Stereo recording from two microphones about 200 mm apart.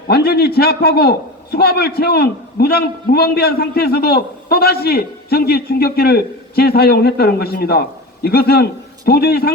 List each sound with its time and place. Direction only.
0.1 s a man's voice: 50° left (ahead or behind)